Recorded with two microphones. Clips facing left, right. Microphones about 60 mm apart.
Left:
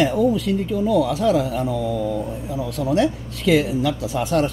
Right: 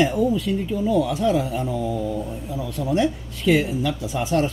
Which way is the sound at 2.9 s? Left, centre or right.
Left.